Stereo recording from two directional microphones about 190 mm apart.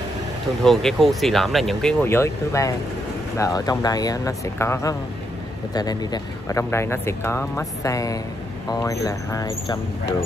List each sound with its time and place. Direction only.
0.7 s speech: centre (ahead or behind); by 9.8 s 20° left (ahead or behind)